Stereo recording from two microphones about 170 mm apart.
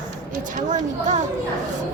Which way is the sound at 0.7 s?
45° right (ahead or behind).